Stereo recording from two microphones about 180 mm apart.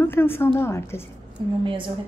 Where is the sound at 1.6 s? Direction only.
30° right (ahead or behind).